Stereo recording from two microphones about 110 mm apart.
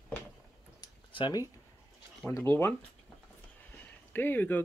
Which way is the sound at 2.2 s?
25° left (ahead or behind).